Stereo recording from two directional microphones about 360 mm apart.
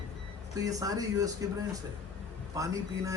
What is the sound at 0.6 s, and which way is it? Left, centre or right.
Speech, centre.